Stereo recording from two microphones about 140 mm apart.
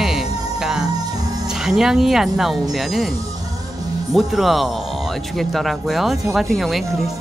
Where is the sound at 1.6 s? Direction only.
5° right (ahead or behind).